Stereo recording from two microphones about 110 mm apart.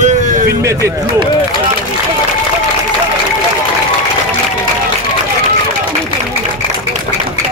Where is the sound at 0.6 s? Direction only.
25° right (ahead or behind).